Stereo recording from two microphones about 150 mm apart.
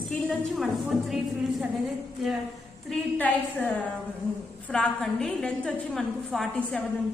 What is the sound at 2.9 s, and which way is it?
Speech, 10° left (ahead or behind).